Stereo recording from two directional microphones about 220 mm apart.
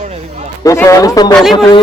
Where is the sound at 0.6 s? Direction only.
15° left (ahead or behind).